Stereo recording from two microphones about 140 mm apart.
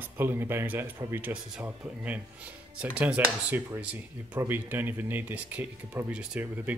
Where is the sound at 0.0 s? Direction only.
15° right (ahead or behind).